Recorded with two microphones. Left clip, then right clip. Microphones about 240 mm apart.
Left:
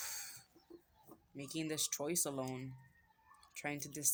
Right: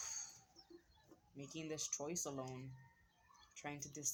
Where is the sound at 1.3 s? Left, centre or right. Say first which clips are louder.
Left 6 dB; left.